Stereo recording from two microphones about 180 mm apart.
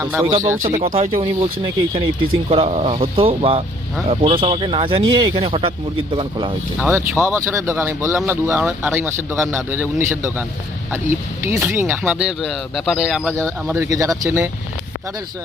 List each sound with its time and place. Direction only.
0.0 s speech: 15° right (ahead or behind)
0.6 s speech: 40° right (ahead or behind)
6.7 s speech: 5° right (ahead or behind)
13.3 s speech: 15° right (ahead or behind)